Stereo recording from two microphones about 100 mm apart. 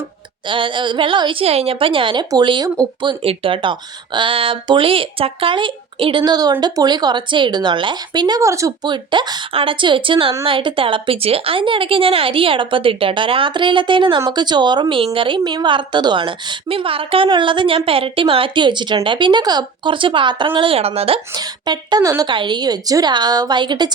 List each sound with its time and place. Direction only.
0.4 s a woman's voice: 55° right (ahead or behind)
8.4 s a woman's voice: 30° right (ahead or behind)
8.8 s a woman's voice: 50° right (ahead or behind)
14.2 s a woman's voice: 45° right (ahead or behind); by 21.2 s 85° right
21.3 s a woman's voice: 45° right (ahead or behind)
22.3 s speech: 50° right (ahead or behind)